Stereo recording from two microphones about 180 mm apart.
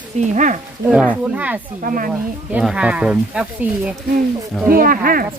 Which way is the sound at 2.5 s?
5° right (ahead or behind).